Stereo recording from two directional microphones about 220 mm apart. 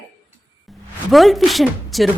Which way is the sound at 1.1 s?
Centre (ahead or behind).